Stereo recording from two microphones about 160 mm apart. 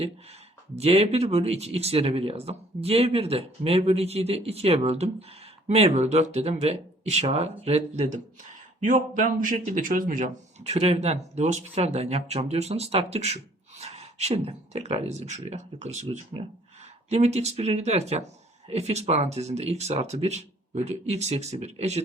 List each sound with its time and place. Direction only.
0.8 s speech: 40° right (ahead or behind)
8.8 s speech: 55° right (ahead or behind)